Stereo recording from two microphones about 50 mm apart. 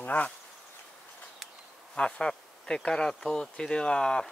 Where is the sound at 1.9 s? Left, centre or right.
Centre.